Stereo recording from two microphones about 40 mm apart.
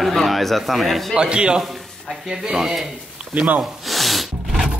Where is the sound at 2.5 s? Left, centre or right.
Centre.